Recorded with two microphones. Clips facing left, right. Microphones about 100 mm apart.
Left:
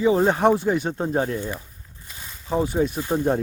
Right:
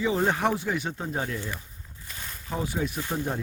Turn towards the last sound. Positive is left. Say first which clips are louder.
# left 8 dB
turn(degrees=25)  # may be behind; listen again after turning